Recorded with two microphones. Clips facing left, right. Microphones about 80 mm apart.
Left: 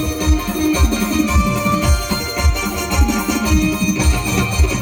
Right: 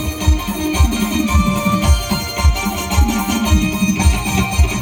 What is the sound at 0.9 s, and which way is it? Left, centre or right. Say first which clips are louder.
Music: even; centre.